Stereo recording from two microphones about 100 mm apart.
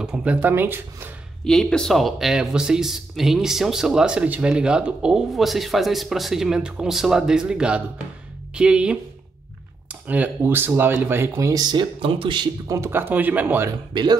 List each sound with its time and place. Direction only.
0.0 s speech: 10° right (ahead or behind)
1.4 s speech: 5° left (ahead or behind); by 8.9 s 10° right (ahead or behind)
10.0 s speech: 15° right (ahead or behind); by 12.4 s 60° right (ahead or behind)
12.6 s speech: 30° right (ahead or behind)